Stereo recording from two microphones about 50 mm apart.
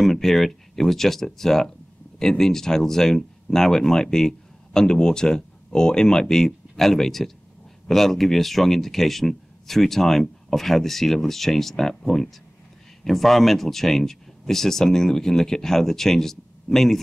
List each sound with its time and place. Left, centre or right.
0.0 s speech: centre